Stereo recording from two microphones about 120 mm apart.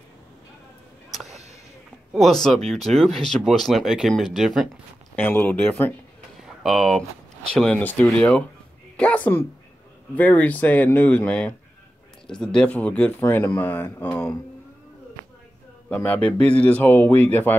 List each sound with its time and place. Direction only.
2.1 s speech: centre (ahead or behind)
5.1 s a man's voice: 15° left (ahead or behind)
6.4 s a man's voice: centre (ahead or behind)
15.9 s a man's voice: 10° left (ahead or behind)